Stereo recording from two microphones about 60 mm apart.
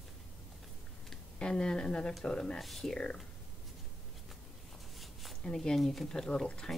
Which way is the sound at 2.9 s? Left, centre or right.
Centre.